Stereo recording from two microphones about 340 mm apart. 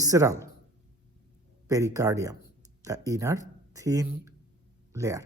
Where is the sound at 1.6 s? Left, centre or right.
Centre.